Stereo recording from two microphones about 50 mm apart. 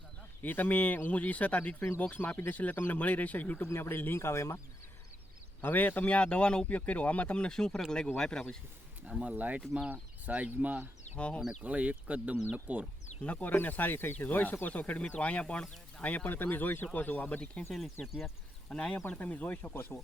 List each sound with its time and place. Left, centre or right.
0.4 s speech: left
3.8 s speech: left
5.6 s speech: left; by 8.5 s centre
9.2 s speech: right
13.2 s speech: left
14.3 s speech: left
17.6 s speech: centre
18.7 s speech: centre
19.2 s speech: left